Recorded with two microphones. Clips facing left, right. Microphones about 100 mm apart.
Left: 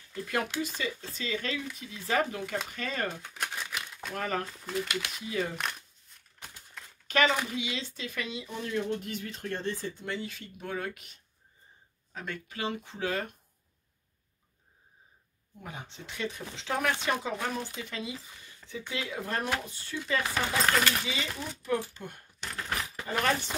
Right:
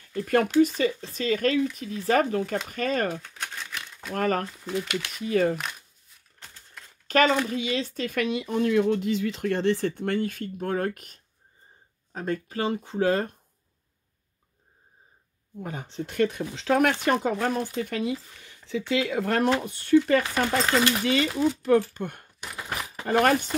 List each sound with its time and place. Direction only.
0.1 s speech: 50° right (ahead or behind)
3.2 s a sound: 10° left (ahead or behind)
4.1 s speech: 45° right (ahead or behind)
6.4 s typewriter: 10° left (ahead or behind)
7.1 s speech: 40° right (ahead or behind)
15.6 s speech: 45° right (ahead or behind)
16.2 s speech: 65° right (ahead or behind)
22.4 s a sound: 15° right (ahead or behind)
23.0 s speech: 65° right (ahead or behind)